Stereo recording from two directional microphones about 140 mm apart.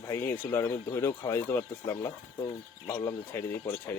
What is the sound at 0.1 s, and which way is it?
A man's voice, 20° left (ahead or behind).